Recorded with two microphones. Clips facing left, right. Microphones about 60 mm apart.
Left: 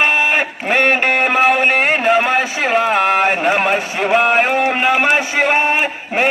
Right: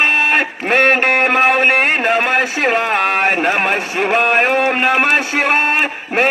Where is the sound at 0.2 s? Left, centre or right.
Right.